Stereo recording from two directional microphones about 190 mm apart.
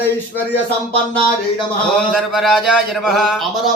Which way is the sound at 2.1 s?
Centre (ahead or behind).